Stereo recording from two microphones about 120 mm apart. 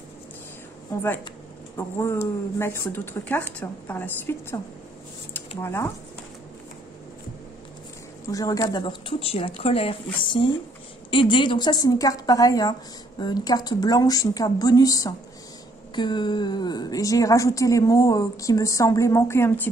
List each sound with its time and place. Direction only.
1.8 s a woman's voice: 20° left (ahead or behind)
5.6 s a woman's voice: 20° left (ahead or behind)
8.3 s a woman's voice: 30° left (ahead or behind)
9.2 s a woman's voice: 55° left (ahead or behind); by 19.7 s 20° left (ahead or behind)